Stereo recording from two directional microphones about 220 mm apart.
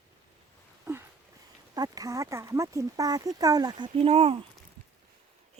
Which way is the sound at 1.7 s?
15° right (ahead or behind).